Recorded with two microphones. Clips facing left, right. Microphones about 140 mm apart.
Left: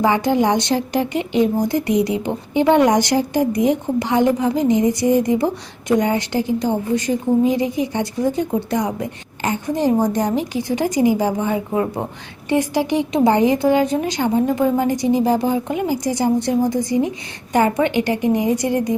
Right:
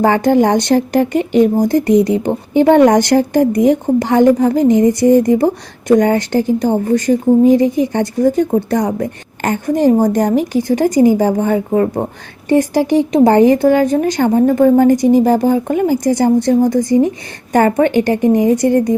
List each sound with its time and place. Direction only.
0.0 s a woman's voice: 50° right (ahead or behind)